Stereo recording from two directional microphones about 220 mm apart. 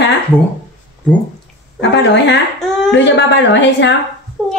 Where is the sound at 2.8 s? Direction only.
55° left (ahead or behind).